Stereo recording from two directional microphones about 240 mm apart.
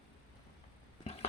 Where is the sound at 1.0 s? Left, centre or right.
Left.